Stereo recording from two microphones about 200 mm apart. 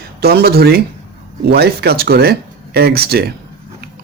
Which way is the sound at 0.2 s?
50° right (ahead or behind).